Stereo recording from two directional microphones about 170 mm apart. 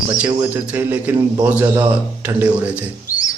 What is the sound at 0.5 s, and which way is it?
A man's voice, 10° right (ahead or behind).